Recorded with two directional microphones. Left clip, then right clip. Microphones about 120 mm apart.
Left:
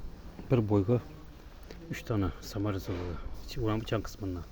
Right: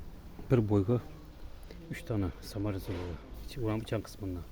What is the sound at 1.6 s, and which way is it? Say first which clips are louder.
Speech: left 3 dB; 30° left (ahead or behind).